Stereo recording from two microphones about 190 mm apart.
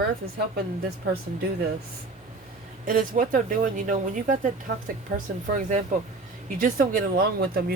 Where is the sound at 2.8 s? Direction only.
45° right (ahead or behind).